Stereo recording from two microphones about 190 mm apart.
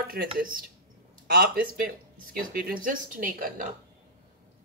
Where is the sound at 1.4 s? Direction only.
50° right (ahead or behind).